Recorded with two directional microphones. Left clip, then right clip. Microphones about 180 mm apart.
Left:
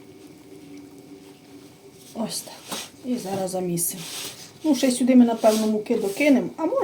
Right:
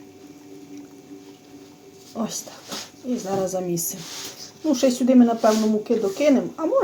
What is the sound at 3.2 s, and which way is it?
Speech, 25° right (ahead or behind).